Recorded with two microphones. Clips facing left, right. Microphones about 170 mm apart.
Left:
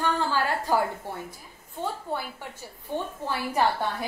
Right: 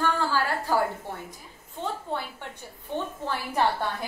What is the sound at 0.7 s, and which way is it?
Speech, 15° left (ahead or behind).